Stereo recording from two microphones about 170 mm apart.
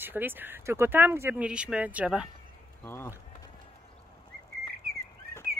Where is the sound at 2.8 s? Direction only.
15° left (ahead or behind).